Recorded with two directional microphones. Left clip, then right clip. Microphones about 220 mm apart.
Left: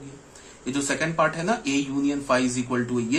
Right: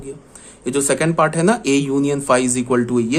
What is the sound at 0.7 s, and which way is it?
A man's voice, 50° right (ahead or behind).